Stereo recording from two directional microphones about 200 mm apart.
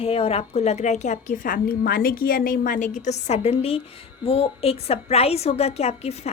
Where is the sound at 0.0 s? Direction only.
30° left (ahead or behind).